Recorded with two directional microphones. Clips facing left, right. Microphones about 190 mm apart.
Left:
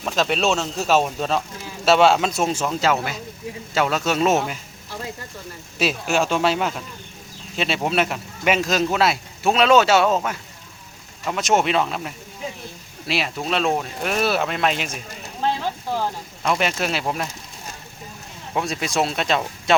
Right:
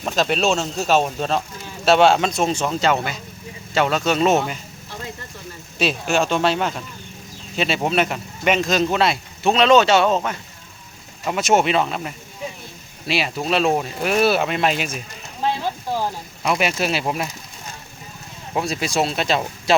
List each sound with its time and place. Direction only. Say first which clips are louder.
0.0 s speech: right 1 dB; centre (ahead or behind)
5.8 s speech: right 1 dB; 5° left (ahead or behind)
16.0 s speech: right 1 dB; 10° right (ahead or behind)
18.5 s speech: right 1 dB; centre (ahead or behind)